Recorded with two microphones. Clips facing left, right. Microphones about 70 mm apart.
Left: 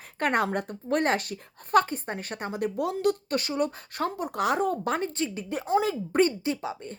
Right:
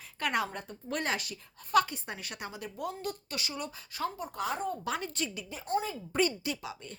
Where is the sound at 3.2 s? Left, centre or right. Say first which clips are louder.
Left 11 dB; left.